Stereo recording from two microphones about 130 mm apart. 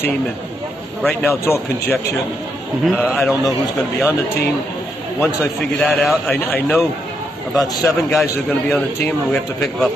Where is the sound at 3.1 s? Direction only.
5° right (ahead or behind).